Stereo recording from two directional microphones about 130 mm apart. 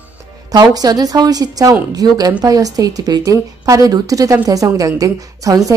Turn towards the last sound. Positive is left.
turn(degrees=-25)  # may be behind; listen again after turning